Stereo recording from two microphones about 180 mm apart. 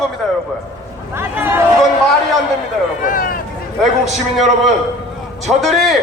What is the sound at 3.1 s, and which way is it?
Speech, 50° left (ahead or behind).